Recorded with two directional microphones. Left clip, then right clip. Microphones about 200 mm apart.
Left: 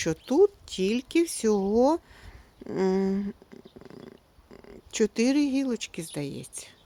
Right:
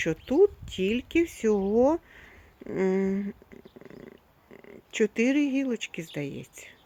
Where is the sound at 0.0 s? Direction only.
5° left (ahead or behind).